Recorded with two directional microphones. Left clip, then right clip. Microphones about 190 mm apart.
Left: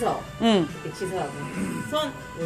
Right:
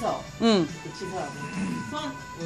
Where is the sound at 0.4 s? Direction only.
20° right (ahead or behind).